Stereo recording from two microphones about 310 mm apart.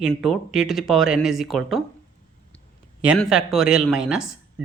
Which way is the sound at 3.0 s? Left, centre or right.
Centre.